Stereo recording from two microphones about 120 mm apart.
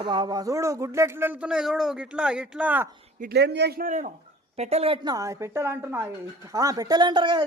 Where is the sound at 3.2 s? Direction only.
90° right.